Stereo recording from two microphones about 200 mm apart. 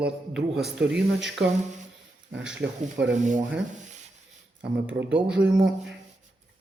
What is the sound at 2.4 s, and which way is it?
Speech, 5° right (ahead or behind).